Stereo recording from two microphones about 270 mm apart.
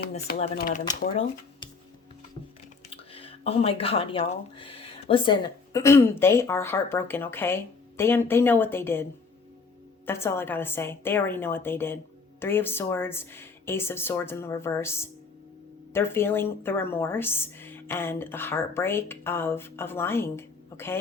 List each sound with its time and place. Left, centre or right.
0.1 s speech: left
2.9 s speech: left
10.1 s speech: centre